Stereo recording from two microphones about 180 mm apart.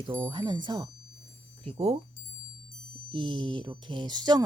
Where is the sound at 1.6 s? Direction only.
35° right (ahead or behind).